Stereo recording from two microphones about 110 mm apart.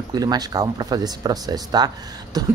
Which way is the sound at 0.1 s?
35° right (ahead or behind).